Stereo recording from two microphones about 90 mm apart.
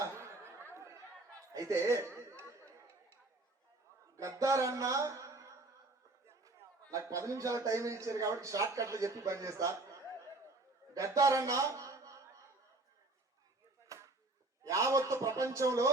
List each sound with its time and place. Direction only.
0.0 s chatter: 30° right (ahead or behind)
1.5 s a man's voice: 35° right (ahead or behind)
2.1 s chatter: 30° right (ahead or behind)
4.2 s music: 35° right (ahead or behind)
6.2 s chatter: 30° right (ahead or behind)
6.9 s a man's voice: 35° right (ahead or behind)
13.8 s chop: 35° right (ahead or behind)
14.6 s a man's voice: 35° right (ahead or behind)